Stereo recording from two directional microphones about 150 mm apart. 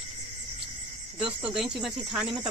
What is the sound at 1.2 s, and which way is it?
Speech, 5° right (ahead or behind).